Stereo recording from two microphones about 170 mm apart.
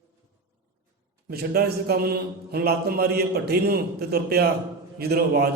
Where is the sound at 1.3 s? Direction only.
65° right (ahead or behind).